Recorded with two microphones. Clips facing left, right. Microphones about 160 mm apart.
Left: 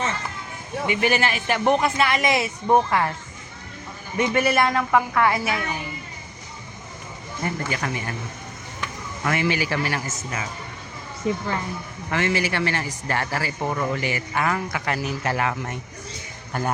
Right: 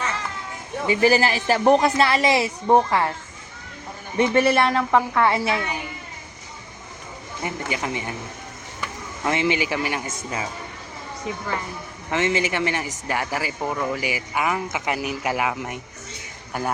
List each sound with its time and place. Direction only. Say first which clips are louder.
0.9 s a woman's voice: right 4 dB; 35° right (ahead or behind)
4.2 s a man's voice: right 2 dB; 30° right (ahead or behind)
7.4 s speech: even; 15° right (ahead or behind)
9.2 s a man's voice: right 1 dB; 20° right (ahead or behind)
12.1 s speech: right 1 dB; 20° right (ahead or behind)
13.6 s speech: left 1 dB; centre (ahead or behind)